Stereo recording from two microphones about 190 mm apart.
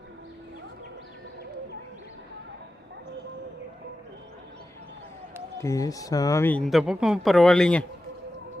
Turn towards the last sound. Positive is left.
turn(degrees=5)  # may be behind; listen again after turning